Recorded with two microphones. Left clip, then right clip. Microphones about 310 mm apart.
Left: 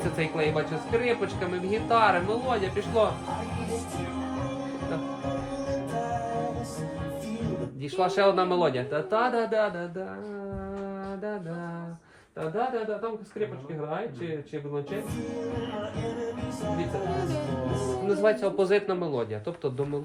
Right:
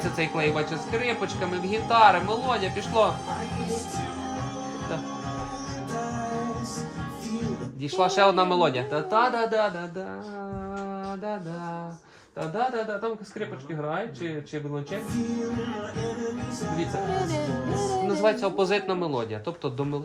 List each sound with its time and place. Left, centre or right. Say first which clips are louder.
0.2 s speech: right 2 dB; centre
7.9 s speech: right 3 dB; centre
18.1 s speech: left 2 dB; centre